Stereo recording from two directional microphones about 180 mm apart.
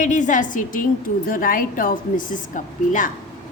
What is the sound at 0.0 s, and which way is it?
A woman's voice, 45° left (ahead or behind).